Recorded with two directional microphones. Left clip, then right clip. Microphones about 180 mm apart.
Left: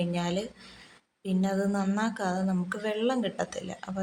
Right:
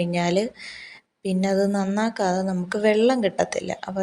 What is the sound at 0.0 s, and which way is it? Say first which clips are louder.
Speech: right 9 dB; 25° right (ahead or behind).